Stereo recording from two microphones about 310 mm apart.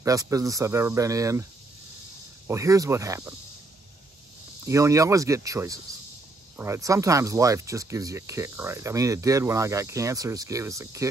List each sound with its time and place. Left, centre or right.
0.0 s speech: centre
2.4 s speech: centre
4.6 s speech: centre